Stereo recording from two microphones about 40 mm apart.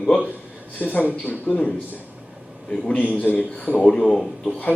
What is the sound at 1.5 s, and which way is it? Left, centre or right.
Speech, left.